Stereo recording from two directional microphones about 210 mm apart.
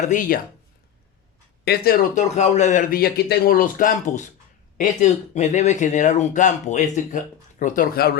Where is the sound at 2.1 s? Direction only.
35° left (ahead or behind).